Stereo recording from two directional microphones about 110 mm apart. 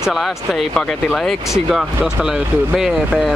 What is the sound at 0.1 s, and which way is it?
Speech, centre (ahead or behind).